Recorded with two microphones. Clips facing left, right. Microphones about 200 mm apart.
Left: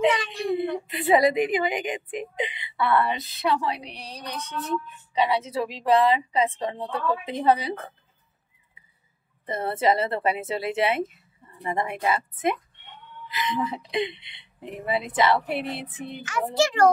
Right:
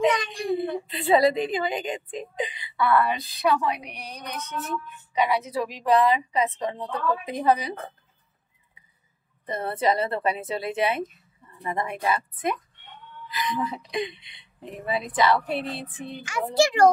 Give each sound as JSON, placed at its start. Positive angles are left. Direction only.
{"t": 0.1, "sound": "whimper", "side_deg": 5}
{"t": 0.6, "sound": "a woman's voice", "side_deg": 20}
{"t": 9.5, "sound": "a woman's voice", "side_deg": 25}
{"t": 16.3, "sound": "a child's voice", "side_deg": -10}